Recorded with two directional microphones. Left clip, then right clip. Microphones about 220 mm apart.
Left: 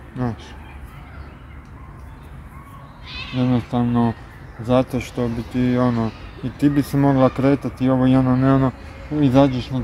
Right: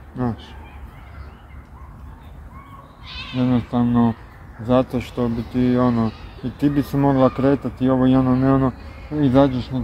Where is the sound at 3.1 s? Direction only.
45° right (ahead or behind).